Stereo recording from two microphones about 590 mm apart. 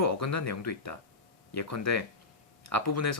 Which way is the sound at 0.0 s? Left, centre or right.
Left.